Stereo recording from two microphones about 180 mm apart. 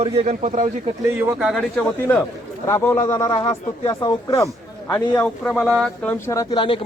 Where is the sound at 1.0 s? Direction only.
15° right (ahead or behind).